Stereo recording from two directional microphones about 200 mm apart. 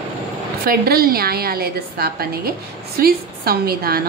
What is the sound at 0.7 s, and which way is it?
A woman's voice, 50° right (ahead or behind).